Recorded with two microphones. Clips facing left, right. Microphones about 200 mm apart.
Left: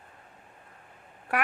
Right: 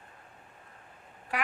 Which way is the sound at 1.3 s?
60° left (ahead or behind).